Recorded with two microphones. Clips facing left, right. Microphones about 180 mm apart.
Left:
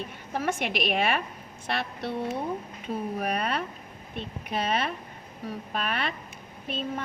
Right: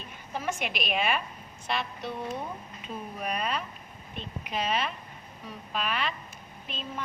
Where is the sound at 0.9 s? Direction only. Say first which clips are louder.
Left 2 dB; 60° left (ahead or behind).